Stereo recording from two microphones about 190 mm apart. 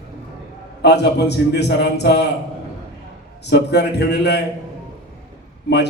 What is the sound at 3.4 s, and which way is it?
A man's voice, 60° left (ahead or behind).